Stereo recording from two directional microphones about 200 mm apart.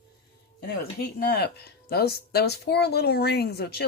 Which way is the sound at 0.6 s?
50° left (ahead or behind).